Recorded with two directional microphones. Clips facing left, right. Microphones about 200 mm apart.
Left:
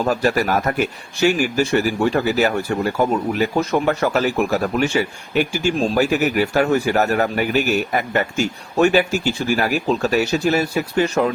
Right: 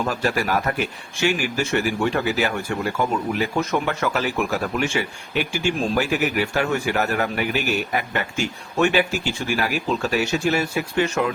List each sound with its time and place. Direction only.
0.0 s speech: 40° left (ahead or behind)